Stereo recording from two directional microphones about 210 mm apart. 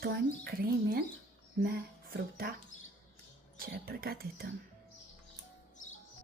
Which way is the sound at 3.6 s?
45° right (ahead or behind).